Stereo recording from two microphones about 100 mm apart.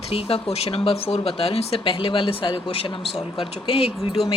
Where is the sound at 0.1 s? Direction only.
75° left (ahead or behind).